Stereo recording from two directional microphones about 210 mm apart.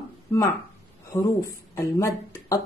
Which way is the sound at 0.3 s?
15° left (ahead or behind).